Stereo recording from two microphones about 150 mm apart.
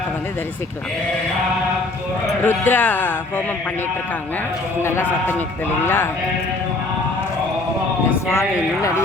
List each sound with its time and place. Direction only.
2.4 s speech: 15° left (ahead or behind)
4.8 s speech: 15° left (ahead or behind)
8.3 s speech: 20° left (ahead or behind)